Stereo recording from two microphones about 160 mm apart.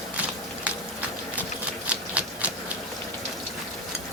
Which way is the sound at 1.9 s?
10° right (ahead or behind).